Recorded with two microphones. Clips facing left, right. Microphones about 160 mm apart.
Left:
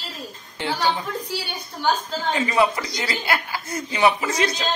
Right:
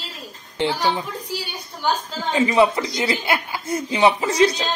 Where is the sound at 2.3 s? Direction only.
20° right (ahead or behind).